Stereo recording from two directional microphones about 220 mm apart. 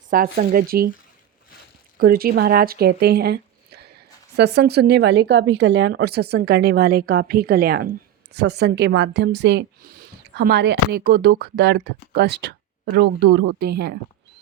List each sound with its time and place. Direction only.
0.1 s speech: 40° right (ahead or behind)
2.0 s speech: 45° right (ahead or behind)